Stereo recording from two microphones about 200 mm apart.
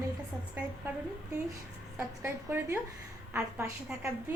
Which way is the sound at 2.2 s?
10° right (ahead or behind).